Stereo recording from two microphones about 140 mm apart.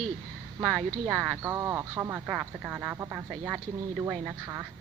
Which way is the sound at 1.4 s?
20° right (ahead or behind).